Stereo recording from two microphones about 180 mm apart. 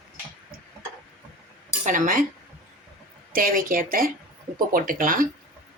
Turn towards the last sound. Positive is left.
turn(degrees=-50)  # may be behind; listen again after turning